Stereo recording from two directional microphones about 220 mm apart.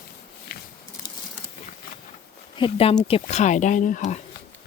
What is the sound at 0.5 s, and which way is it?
Biting, 45° left (ahead or behind).